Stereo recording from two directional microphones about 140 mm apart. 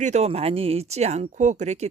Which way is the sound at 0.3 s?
45° right (ahead or behind).